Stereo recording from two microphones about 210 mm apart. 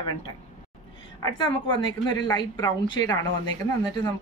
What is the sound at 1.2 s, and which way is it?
A woman's voice, 20° left (ahead or behind).